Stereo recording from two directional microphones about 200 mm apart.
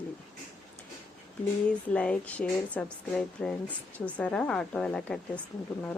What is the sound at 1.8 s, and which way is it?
A woman's voice, 5° left (ahead or behind).